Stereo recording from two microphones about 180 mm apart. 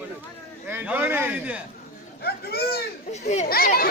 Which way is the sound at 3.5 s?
55° left (ahead or behind).